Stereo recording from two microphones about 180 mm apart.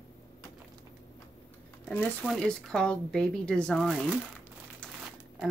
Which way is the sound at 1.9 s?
5° left (ahead or behind).